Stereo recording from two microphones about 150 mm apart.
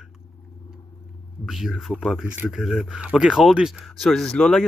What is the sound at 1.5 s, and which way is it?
Speech, centre (ahead or behind).